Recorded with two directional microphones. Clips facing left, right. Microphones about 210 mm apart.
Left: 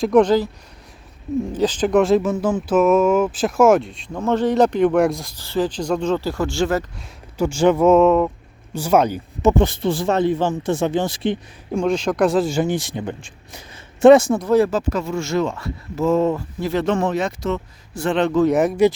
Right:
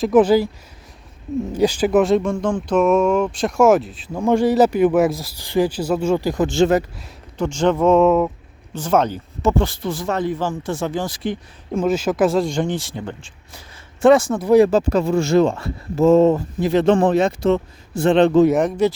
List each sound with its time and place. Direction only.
0.0 s speech: 5° right (ahead or behind)
1.5 s speech: 10° right (ahead or behind)
5.4 s speech: 15° right (ahead or behind)
7.3 s speech: 10° left (ahead or behind)
8.7 s speech: 10° left (ahead or behind)
11.7 s speech: 5° right (ahead or behind); by 14.3 s 20° left (ahead or behind)
14.3 s speech: 10° right (ahead or behind)
14.7 s speech: 30° right (ahead or behind)
16.8 s speech: 30° right (ahead or behind)
18.4 s speech: centre (ahead or behind)